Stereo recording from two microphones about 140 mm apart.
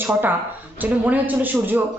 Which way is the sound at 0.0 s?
15° right (ahead or behind).